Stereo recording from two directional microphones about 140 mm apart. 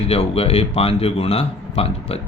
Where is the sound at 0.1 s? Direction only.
45° left (ahead or behind).